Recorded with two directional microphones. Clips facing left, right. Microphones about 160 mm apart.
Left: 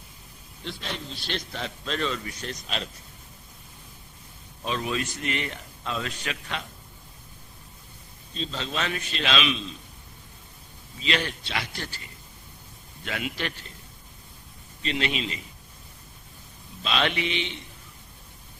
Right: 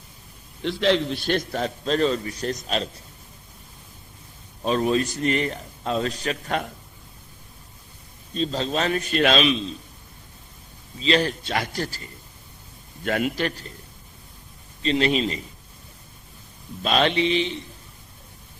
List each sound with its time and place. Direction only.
0.6 s a man's voice: 90° right; by 2.9 s 40° right (ahead or behind)
4.6 s a man's voice: 40° right (ahead or behind)
8.3 s a man's voice: 40° right (ahead or behind)
11.0 s a man's voice: 35° right (ahead or behind)
14.8 s a man's voice: 35° right (ahead or behind)
16.8 s a man's voice: 45° right (ahead or behind)
17.1 s a man's voice: 30° right (ahead or behind)